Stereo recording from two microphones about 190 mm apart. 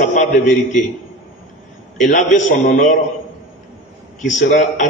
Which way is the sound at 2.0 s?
40° left (ahead or behind).